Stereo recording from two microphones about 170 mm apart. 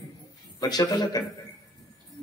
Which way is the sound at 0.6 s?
25° left (ahead or behind).